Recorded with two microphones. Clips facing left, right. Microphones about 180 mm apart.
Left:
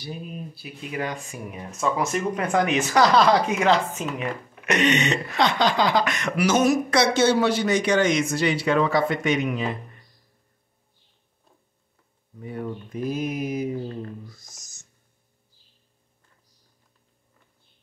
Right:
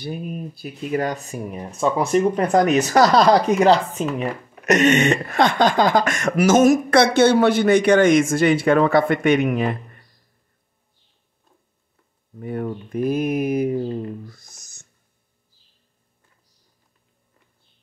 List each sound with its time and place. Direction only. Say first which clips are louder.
0.0 s speech: right 6 dB; 50° right (ahead or behind)
12.4 s speech: right 5 dB; 55° right (ahead or behind)
14.2 s a sound: right 4 dB; 60° right (ahead or behind)